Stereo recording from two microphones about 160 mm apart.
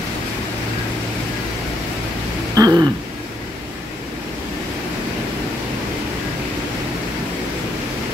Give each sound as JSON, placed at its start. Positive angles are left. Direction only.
{"t": 2.5, "sound": "throat clearing", "side_deg": -25}